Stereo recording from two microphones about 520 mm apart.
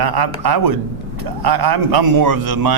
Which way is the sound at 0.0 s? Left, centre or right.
Right.